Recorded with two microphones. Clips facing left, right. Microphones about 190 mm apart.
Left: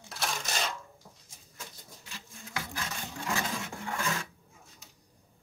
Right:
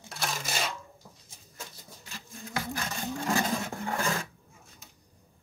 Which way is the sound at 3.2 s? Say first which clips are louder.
Right 5 dB; 40° right (ahead or behind).